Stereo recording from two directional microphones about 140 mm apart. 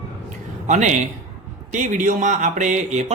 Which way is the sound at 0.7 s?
60° right (ahead or behind).